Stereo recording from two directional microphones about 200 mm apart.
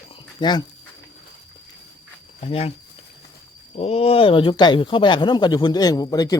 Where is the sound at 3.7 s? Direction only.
30° left (ahead or behind).